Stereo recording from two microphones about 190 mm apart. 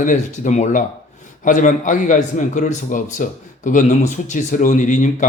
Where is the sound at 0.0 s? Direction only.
40° left (ahead or behind).